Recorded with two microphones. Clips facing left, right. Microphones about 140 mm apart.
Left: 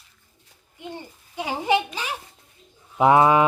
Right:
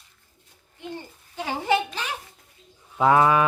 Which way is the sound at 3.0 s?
20° left (ahead or behind).